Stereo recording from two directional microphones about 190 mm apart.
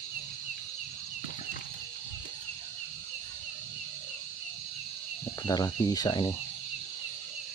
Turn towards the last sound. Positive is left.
turn(degrees=20)  # may be behind; listen again after turning